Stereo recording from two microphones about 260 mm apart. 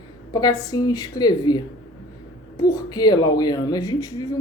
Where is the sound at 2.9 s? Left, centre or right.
Centre.